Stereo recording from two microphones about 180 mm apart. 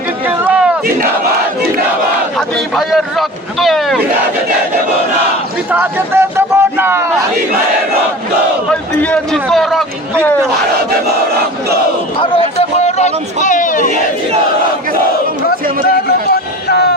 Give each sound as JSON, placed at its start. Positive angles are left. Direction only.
{"t": 0.3, "sound": "a sound", "side_deg": -10}
{"t": 2.7, "sound": "speech", "side_deg": 0}
{"t": 5.7, "sound": "speech", "side_deg": -10}
{"t": 8.7, "sound": "speech", "side_deg": 5}
{"t": 12.2, "sound": "speech", "side_deg": 30}
{"t": 16.0, "sound": "a sound", "side_deg": 60}